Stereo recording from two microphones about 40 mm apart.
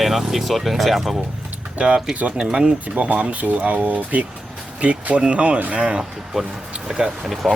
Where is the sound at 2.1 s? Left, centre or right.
Right.